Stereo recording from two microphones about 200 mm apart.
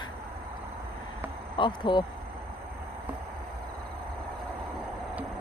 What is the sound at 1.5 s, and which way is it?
Speech, 25° left (ahead or behind).